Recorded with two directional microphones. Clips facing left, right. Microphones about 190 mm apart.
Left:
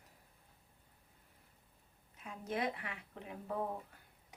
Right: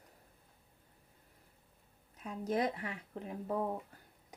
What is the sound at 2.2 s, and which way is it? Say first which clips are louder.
Speech: right 5 dB; 40° right (ahead or behind).